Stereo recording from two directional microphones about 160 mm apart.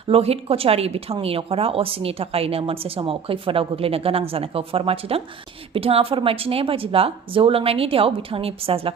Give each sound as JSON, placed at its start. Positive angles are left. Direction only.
{"t": 0.1, "sound": "speech", "side_deg": -40}